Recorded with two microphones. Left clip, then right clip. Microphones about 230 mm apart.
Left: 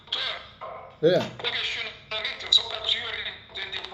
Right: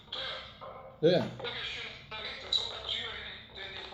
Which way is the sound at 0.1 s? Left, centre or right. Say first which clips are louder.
Left 9 dB; left.